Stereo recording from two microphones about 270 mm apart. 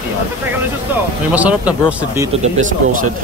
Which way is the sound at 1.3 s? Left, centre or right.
Centre.